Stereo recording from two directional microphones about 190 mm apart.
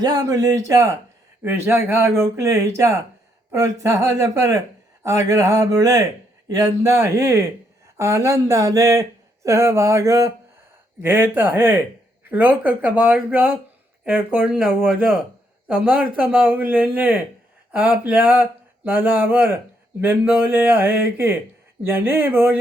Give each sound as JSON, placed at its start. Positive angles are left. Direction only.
{"t": 0.0, "sound": "speech", "side_deg": -20}